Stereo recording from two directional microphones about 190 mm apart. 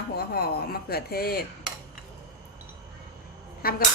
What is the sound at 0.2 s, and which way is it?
Dishes, 55° left (ahead or behind).